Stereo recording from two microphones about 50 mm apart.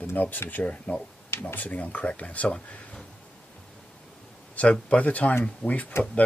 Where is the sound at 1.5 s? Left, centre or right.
Left.